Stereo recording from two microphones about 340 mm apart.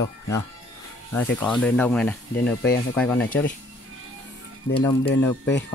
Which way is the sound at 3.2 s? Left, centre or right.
Left.